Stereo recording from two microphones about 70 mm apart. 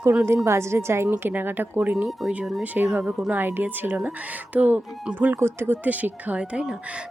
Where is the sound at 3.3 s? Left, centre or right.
Right.